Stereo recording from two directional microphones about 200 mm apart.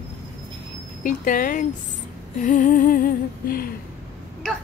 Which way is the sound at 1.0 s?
40° left (ahead or behind).